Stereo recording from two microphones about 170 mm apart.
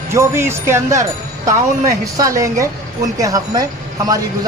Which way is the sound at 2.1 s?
20° right (ahead or behind).